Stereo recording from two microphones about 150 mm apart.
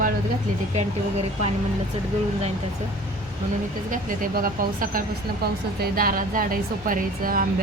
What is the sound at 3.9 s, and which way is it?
A woman's voice, 70° right (ahead or behind).